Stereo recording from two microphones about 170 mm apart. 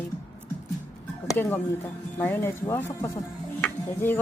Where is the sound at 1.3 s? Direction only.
10° left (ahead or behind).